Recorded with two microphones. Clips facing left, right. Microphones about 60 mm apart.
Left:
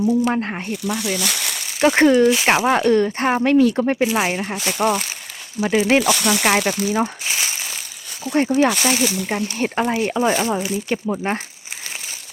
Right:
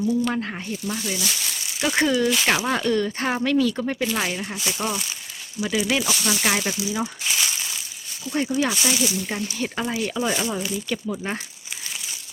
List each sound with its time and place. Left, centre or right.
0.3 s speech: left
0.7 s speech: left
2.0 s speech: left
3.8 s speech: left
4.3 s speech: left
5.5 s speech: left
6.0 s speech: left
6.4 s speech: left
8.7 s speech: left